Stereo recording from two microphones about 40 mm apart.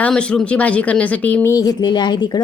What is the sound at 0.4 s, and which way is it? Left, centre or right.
Speech, left.